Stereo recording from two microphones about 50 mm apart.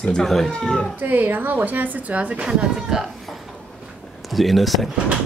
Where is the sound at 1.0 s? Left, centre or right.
Right.